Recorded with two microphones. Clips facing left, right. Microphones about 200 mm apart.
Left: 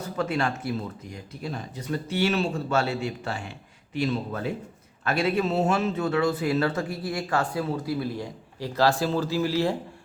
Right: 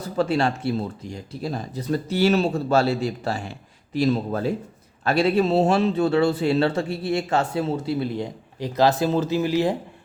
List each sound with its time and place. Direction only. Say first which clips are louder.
0.2 s speech: right 5 dB; 30° right (ahead or behind)